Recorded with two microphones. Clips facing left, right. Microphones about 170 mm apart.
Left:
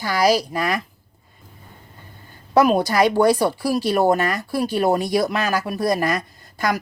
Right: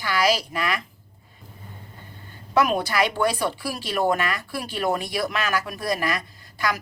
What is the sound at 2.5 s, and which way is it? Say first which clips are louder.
Speech: left 5 dB; 35° left (ahead or behind).